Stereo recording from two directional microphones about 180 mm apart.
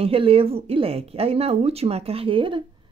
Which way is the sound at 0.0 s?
30° right (ahead or behind).